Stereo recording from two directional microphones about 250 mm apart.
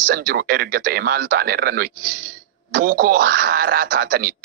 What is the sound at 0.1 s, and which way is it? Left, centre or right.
Speech, right.